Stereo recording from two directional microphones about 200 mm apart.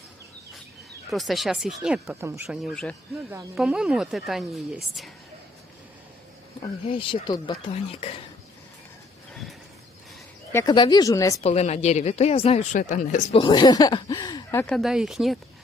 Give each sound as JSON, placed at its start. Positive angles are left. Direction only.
{"t": 1.1, "sound": "speech", "side_deg": 0}
{"t": 6.8, "sound": "speech", "side_deg": 25}
{"t": 9.3, "sound": "a sound", "side_deg": 0}
{"t": 10.5, "sound": "speech", "side_deg": 15}
{"t": 11.3, "sound": "speech", "side_deg": 30}
{"t": 13.4, "sound": "speech", "side_deg": 20}